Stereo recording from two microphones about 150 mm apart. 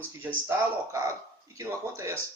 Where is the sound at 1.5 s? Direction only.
20° right (ahead or behind).